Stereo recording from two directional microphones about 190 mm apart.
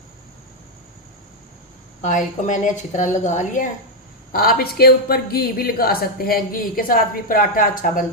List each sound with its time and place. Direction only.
2.0 s a woman's voice: 40° left (ahead or behind)
4.3 s speech: 50° left (ahead or behind)